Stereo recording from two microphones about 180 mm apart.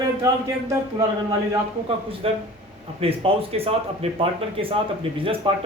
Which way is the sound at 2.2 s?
30° right (ahead or behind).